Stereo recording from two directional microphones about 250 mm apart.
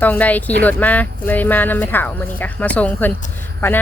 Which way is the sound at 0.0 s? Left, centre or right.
Centre.